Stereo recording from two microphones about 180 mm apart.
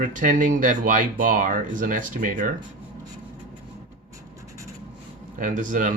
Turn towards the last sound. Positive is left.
turn(degrees=-45)  # may be behind; listen again after turning